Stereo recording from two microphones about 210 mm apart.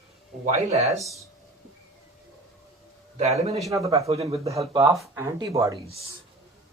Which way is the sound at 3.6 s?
15° right (ahead or behind).